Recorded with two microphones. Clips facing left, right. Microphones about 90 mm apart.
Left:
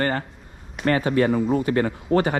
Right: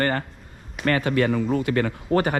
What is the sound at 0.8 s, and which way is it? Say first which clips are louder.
Speech: left 1 dB; centre (ahead or behind).